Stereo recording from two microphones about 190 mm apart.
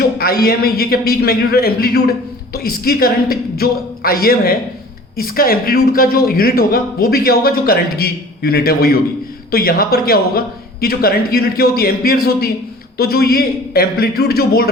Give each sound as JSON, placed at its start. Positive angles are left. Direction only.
{"t": 0.2, "sound": "speech", "side_deg": 55}